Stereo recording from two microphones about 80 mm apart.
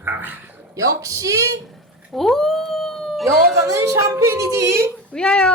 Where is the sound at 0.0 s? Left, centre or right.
Right.